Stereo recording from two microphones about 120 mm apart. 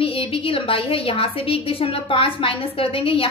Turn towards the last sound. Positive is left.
turn(degrees=50)  # may be behind; listen again after turning